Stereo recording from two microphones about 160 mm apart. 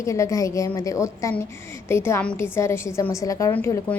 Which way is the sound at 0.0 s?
20° left (ahead or behind).